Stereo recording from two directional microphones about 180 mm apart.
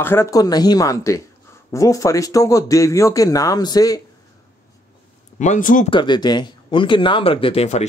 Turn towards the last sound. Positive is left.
turn(degrees=35)  # may be behind; listen again after turning